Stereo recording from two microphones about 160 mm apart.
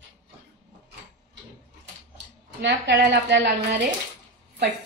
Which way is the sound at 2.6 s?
90° right.